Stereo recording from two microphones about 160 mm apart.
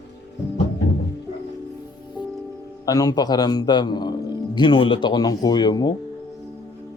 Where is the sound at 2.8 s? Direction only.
20° left (ahead or behind).